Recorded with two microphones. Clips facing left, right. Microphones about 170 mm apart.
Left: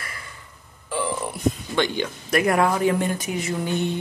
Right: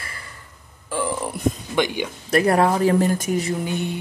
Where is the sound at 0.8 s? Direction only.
45° right (ahead or behind).